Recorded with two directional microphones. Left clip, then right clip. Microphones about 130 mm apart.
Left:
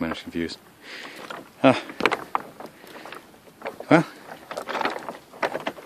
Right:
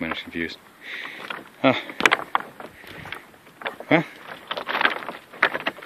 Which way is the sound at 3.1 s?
30° right (ahead or behind).